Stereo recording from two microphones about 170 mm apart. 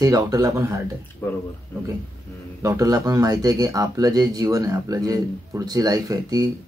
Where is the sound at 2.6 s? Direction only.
20° right (ahead or behind).